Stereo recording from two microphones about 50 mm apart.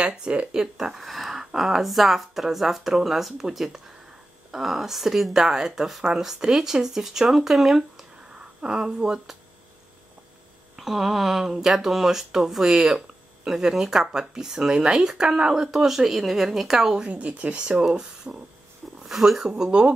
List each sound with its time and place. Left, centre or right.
0.0 s speech: right
0.6 s speech: centre
1.0 s speech: centre
8.4 s speech: centre
10.8 s speech: centre
17.1 s speech: right
19.0 s speech: centre
19.4 s speech: centre